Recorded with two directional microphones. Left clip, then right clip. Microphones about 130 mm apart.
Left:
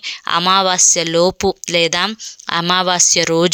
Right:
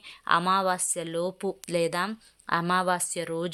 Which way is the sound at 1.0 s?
45° left (ahead or behind).